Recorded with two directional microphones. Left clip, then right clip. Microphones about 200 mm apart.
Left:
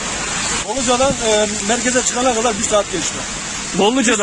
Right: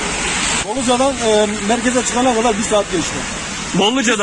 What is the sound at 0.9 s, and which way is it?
Speech, 20° left (ahead or behind).